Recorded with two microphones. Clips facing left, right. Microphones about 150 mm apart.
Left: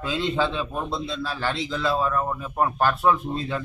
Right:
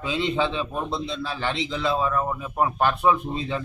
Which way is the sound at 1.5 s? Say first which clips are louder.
Right 1 dB; 20° right (ahead or behind).